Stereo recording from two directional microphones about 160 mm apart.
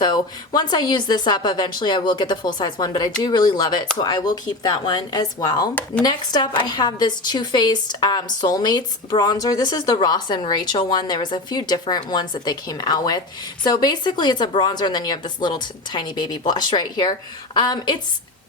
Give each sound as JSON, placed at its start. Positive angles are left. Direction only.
{"t": 0.0, "sound": "a woman's voice", "side_deg": 25}